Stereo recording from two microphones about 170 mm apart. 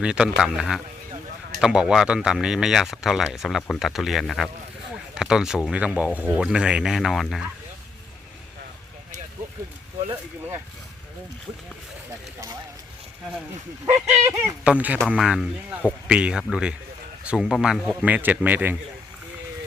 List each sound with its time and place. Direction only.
0.0 s speech: 5° right (ahead or behind)
13.9 s speech: 15° right (ahead or behind)